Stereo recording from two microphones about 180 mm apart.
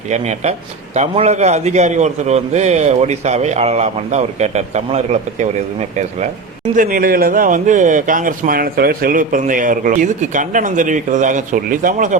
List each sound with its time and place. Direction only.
0.1 s a man's voice: 40° right (ahead or behind)
6.7 s a man's voice: 55° right (ahead or behind)